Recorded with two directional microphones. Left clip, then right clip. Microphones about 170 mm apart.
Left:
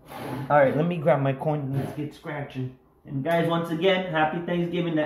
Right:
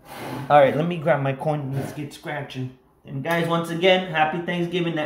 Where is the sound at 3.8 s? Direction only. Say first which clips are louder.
Right 4 dB; 30° right (ahead or behind).